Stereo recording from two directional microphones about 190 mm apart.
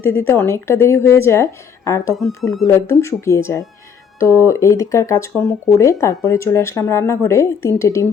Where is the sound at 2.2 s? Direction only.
Centre (ahead or behind).